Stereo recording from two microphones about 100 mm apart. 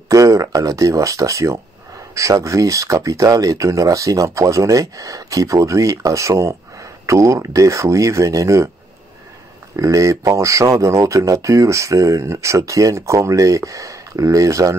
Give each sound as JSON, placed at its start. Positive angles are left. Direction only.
{"t": 0.1, "sound": "speech", "side_deg": -35}
{"t": 9.8, "sound": "speech", "side_deg": -30}